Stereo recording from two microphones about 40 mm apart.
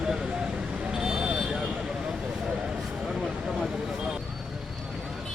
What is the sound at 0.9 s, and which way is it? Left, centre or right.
Vehicle, centre.